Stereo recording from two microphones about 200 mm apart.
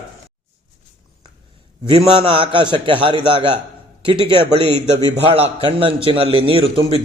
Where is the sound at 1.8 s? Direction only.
30° right (ahead or behind).